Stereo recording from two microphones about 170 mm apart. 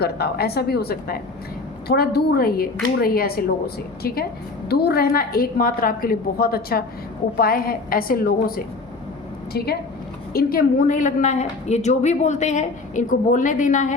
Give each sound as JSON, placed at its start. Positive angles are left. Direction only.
{"t": 0.0, "sound": "a woman's voice", "side_deg": 65}
{"t": 10.3, "sound": "a woman's voice", "side_deg": 55}